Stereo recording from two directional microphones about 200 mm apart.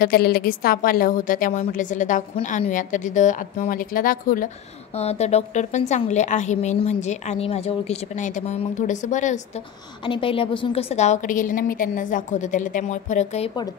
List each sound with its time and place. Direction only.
0.0 s a woman's voice: 50° left (ahead or behind)
4.9 s a woman's voice: 30° left (ahead or behind)
10.0 s a woman's voice: 25° left (ahead or behind)